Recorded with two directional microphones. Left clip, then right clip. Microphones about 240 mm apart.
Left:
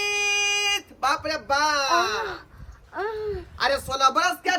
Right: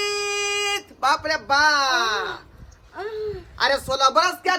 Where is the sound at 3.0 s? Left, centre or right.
Left.